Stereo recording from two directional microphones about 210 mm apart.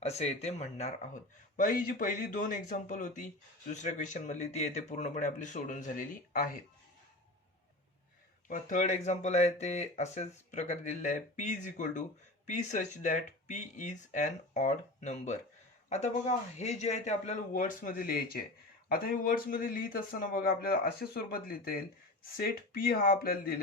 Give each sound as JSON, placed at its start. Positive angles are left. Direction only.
{"t": 0.0, "sound": "speech", "side_deg": 30}
{"t": 8.4, "sound": "a man's voice", "side_deg": 35}